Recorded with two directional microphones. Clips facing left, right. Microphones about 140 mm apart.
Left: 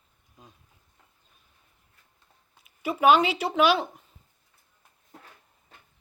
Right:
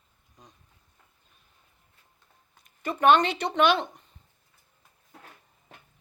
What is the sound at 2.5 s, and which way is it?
Speech, 5° left (ahead or behind).